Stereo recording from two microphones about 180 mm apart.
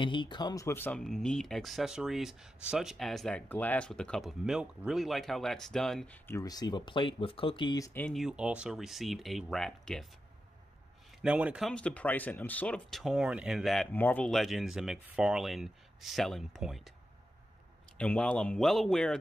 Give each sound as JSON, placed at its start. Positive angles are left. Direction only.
{"t": 0.0, "sound": "speech", "side_deg": 25}
{"t": 6.2, "sound": "speech", "side_deg": 20}
{"t": 8.0, "sound": "speech", "side_deg": 0}
{"t": 11.2, "sound": "speech", "side_deg": -5}
{"t": 17.9, "sound": "speech", "side_deg": 5}